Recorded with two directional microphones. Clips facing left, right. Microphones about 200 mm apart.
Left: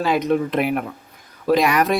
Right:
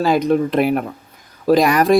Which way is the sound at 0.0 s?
35° right (ahead or behind).